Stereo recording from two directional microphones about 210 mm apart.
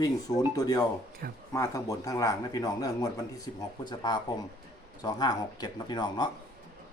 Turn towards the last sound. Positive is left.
turn(degrees=20)  # may be behind; listen again after turning